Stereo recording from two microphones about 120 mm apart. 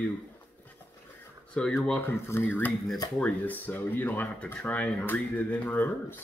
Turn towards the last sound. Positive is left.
turn(degrees=15)  # may be behind; listen again after turning